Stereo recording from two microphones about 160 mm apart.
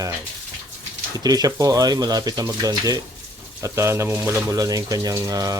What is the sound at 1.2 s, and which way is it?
Speech, 25° right (ahead or behind).